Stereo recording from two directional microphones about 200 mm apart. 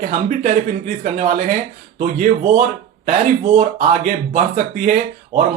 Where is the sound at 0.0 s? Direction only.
40° right (ahead or behind).